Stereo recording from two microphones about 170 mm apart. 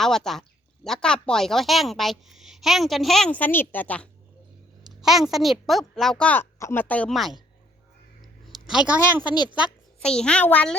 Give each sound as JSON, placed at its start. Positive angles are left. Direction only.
{"t": 0.0, "sound": "a woman's voice", "side_deg": 0}
{"t": 4.9, "sound": "a woman's voice", "side_deg": 0}
{"t": 8.5, "sound": "speech", "side_deg": -5}
{"t": 9.2, "sound": "a woman's voice", "side_deg": 25}
{"t": 9.6, "sound": "a child's voice", "side_deg": 0}